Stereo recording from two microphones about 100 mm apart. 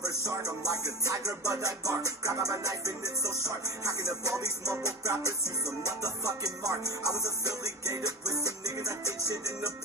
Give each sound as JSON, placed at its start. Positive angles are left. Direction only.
{"t": 0.2, "sound": "music", "side_deg": -30}